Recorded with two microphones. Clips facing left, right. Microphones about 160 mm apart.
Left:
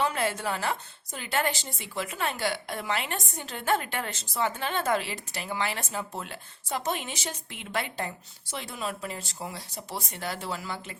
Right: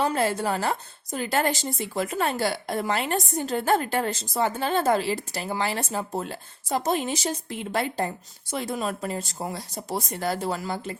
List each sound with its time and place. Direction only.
0.0 s speech: 35° right (ahead or behind)